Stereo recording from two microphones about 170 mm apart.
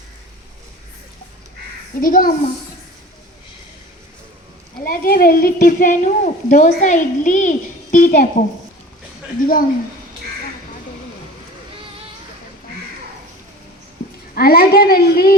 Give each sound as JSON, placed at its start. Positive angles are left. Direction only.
{"t": 2.0, "sound": "a woman's voice", "side_deg": 55}
{"t": 4.8, "sound": "a woman's voice", "side_deg": 55}
{"t": 9.4, "sound": "a woman's voice", "side_deg": 55}
{"t": 14.3, "sound": "a woman's voice", "side_deg": 65}